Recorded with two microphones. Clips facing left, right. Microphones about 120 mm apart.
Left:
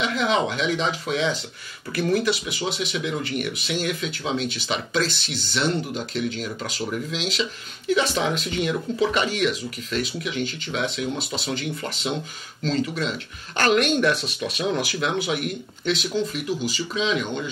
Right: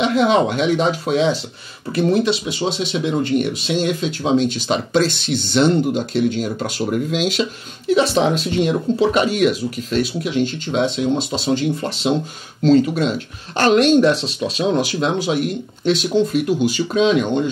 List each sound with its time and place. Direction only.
0.0 s speech: 35° right (ahead or behind)
7.9 s speech: 30° right (ahead or behind)
16.4 s speech: 60° right (ahead or behind)